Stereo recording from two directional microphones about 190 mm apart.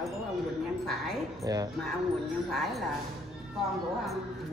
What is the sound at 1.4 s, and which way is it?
Speech, 20° right (ahead or behind).